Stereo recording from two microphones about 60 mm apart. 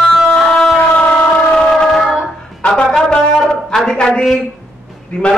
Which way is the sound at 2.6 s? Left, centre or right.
Centre.